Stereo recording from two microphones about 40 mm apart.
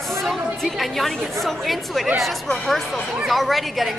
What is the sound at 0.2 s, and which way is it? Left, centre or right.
A woman's voice, centre.